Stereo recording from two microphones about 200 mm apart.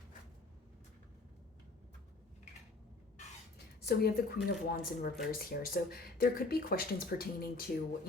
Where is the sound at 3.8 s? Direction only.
50° left (ahead or behind).